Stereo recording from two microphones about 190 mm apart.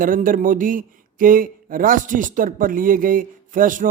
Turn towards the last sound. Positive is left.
turn(degrees=-45)  # may be behind; listen again after turning